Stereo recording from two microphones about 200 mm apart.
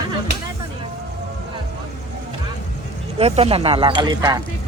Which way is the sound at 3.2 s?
30° right (ahead or behind).